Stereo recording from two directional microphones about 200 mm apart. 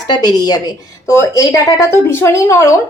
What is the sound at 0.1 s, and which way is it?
Speech, 20° left (ahead or behind).